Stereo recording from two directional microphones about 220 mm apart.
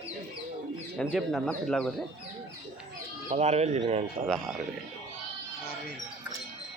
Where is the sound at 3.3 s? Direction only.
30° right (ahead or behind).